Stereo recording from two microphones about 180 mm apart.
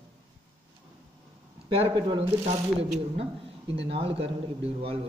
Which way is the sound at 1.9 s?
25° right (ahead or behind).